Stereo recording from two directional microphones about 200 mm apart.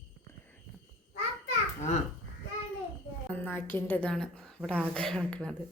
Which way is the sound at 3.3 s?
10° left (ahead or behind).